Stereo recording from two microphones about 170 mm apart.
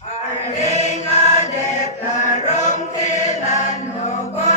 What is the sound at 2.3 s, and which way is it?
Chant, 45° left (ahead or behind).